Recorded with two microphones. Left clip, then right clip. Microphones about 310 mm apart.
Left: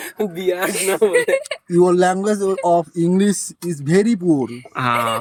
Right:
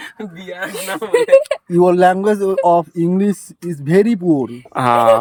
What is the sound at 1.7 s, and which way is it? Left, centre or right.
Speech, centre.